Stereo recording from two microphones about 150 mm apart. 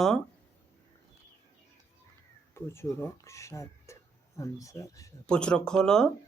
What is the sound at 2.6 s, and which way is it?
Speech, 15° left (ahead or behind).